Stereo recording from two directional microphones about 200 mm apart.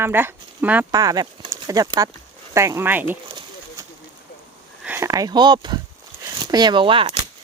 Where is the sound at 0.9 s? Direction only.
20° right (ahead or behind).